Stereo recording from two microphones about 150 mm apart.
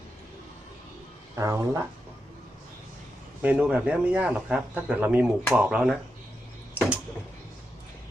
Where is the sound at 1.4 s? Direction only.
20° right (ahead or behind).